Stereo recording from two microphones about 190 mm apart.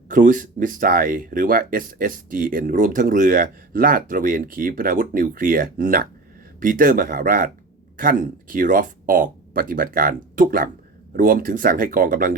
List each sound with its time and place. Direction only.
0.1 s speech: 45° right (ahead or behind)